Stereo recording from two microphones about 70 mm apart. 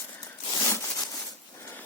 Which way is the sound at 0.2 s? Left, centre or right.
Left.